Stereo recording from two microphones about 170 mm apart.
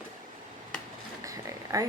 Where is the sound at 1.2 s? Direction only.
20° right (ahead or behind).